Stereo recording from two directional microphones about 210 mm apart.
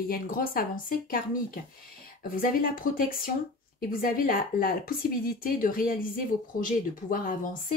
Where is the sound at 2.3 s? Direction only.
45° left (ahead or behind).